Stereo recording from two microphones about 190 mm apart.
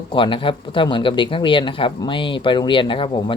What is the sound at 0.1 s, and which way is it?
Speech, 25° left (ahead or behind).